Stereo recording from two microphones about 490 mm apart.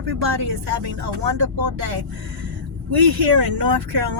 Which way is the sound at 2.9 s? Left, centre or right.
Right.